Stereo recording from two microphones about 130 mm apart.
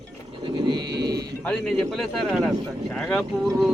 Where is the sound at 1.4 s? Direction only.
5° left (ahead or behind).